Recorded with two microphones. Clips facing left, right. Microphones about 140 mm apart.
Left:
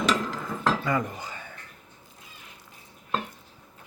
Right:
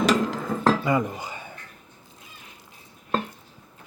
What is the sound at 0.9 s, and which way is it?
Cutlery, 10° right (ahead or behind).